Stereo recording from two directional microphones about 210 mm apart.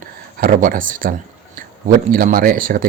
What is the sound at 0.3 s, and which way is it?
Speech, 40° right (ahead or behind).